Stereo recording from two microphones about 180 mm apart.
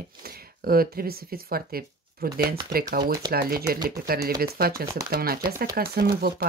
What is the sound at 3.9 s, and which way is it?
Speech, 55° right (ahead or behind).